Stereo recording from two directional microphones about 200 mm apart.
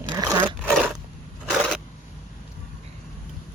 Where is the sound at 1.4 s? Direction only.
Centre (ahead or behind).